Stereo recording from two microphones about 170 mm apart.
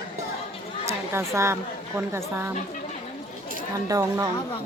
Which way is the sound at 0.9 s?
15° right (ahead or behind).